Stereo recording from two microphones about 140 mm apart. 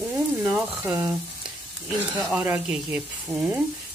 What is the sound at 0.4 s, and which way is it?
Speech, 15° right (ahead or behind).